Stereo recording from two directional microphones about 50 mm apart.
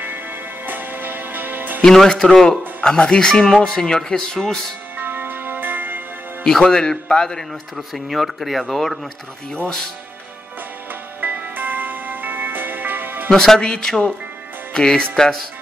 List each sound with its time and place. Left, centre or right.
0.0 s music: right
2.0 s a man's voice: centre
4.9 s music: right
6.4 s a man's voice: centre
7.7 s speech: centre
11.1 s music: right
13.3 s a man's voice: centre